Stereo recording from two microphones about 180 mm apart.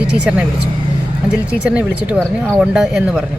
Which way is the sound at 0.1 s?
5° right (ahead or behind).